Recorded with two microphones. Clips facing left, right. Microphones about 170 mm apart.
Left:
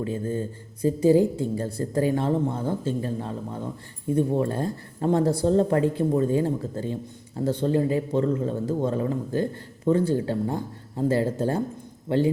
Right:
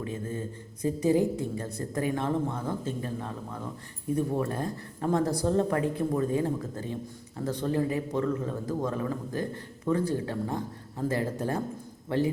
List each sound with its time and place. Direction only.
0.0 s a woman's voice: 30° left (ahead or behind)